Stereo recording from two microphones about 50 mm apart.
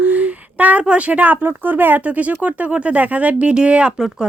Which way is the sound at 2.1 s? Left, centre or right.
Right.